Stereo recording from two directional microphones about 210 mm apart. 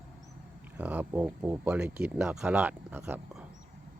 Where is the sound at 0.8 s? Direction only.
5° right (ahead or behind).